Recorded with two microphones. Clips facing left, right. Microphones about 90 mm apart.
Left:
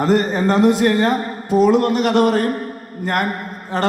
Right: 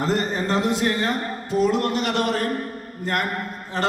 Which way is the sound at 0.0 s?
50° left (ahead or behind).